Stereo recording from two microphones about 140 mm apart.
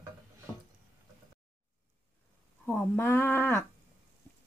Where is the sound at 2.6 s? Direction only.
15° left (ahead or behind).